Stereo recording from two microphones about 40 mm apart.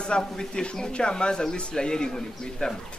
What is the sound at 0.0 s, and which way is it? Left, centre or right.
A man's voice, left.